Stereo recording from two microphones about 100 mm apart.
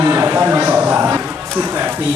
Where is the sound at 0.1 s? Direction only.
20° right (ahead or behind).